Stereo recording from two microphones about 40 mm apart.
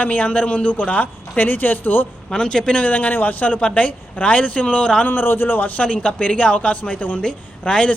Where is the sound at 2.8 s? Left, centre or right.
Left.